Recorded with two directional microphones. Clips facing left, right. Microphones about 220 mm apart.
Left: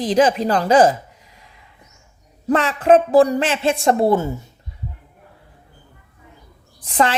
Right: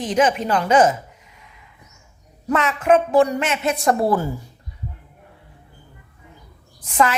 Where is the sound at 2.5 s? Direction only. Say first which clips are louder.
Left 3 dB; 35° left (ahead or behind).